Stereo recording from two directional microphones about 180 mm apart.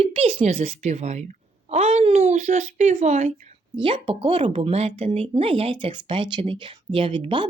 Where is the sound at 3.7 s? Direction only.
25° right (ahead or behind).